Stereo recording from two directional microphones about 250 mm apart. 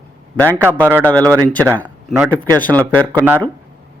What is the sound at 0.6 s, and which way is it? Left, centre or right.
Speech, centre.